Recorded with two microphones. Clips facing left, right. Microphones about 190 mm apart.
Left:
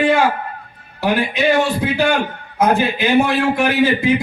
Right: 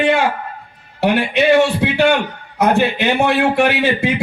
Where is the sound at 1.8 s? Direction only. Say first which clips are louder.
Right 2 dB; 70° right (ahead or behind).